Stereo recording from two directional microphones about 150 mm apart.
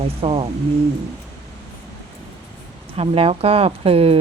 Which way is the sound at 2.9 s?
40° right (ahead or behind).